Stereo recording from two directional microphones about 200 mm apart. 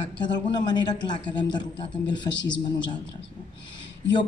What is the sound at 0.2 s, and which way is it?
A woman's voice, 20° left (ahead or behind).